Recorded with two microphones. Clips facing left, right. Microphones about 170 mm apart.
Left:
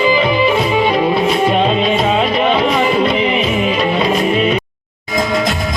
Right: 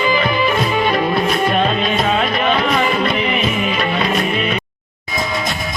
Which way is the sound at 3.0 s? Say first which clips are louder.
Left 4 dB; 25° left (ahead or behind).